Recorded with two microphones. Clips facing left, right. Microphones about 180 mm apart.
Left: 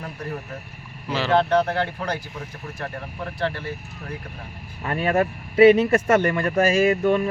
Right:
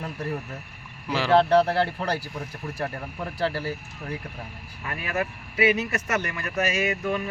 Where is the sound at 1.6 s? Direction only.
35° right (ahead or behind).